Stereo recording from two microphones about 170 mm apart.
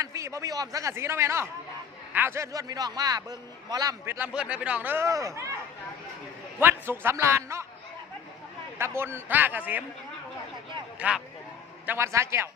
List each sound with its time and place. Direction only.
0.0 s a man's voice: 20° right (ahead or behind)
6.6 s a man's voice: 15° right (ahead or behind)
9.0 s a man's voice: 15° right (ahead or behind)
11.0 s a man's voice: 10° right (ahead or behind)